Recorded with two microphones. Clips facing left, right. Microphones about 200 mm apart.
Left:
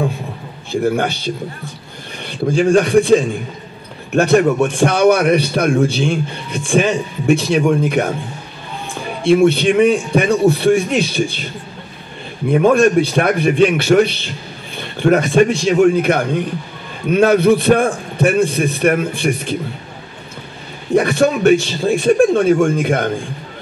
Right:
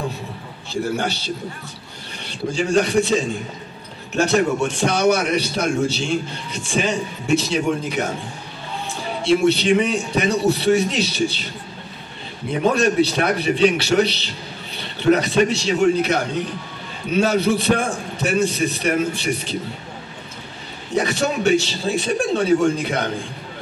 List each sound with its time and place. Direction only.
0.7 s a man's voice: 55° left (ahead or behind)
9.2 s a man's voice: 55° left (ahead or behind)
12.4 s a man's voice: 50° left (ahead or behind)
20.9 s a man's voice: 55° left (ahead or behind)